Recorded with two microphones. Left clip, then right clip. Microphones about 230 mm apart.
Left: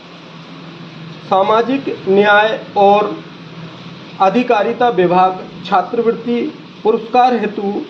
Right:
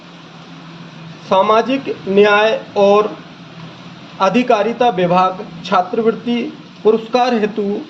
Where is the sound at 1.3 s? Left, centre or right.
Right.